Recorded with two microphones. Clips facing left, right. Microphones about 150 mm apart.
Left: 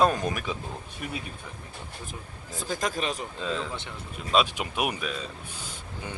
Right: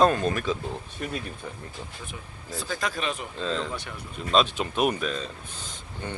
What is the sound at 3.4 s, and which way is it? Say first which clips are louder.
Speech: right 2 dB; 10° left (ahead or behind).